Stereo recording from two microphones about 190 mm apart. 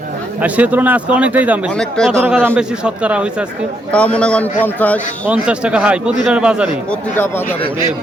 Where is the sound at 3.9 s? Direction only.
5° left (ahead or behind).